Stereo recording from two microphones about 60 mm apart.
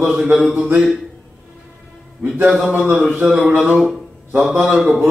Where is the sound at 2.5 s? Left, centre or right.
Right.